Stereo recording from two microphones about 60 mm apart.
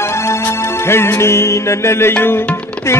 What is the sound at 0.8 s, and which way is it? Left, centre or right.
Music, left.